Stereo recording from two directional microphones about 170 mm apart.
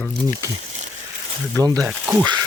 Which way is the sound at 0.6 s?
45° right (ahead or behind).